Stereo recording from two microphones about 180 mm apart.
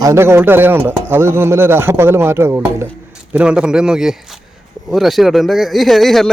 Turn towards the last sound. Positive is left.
turn(degrees=0)  # may be behind; listen again after turning